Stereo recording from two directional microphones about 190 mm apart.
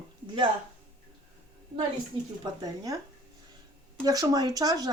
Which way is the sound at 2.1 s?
30° right (ahead or behind).